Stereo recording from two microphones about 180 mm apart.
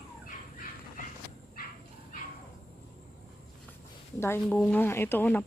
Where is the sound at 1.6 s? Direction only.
55° left (ahead or behind).